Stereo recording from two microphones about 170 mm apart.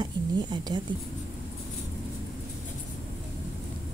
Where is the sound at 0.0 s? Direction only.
25° right (ahead or behind).